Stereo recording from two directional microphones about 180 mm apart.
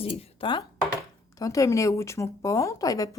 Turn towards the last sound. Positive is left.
turn(degrees=20)  # may be behind; listen again after turning